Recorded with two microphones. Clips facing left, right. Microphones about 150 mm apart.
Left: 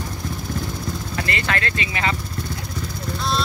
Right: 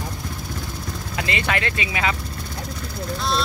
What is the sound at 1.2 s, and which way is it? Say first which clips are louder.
Speech: right 2 dB; 15° right (ahead or behind).